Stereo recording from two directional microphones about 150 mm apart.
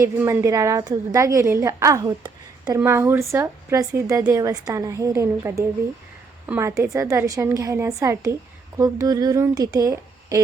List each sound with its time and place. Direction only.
0.0 s a woman's voice: 20° right (ahead or behind)